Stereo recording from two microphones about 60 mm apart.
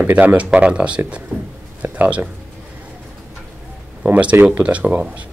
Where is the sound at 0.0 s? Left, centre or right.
Right.